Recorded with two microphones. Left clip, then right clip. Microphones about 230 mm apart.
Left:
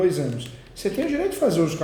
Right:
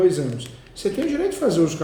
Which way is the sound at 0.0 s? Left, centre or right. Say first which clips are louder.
Right 3 dB; centre.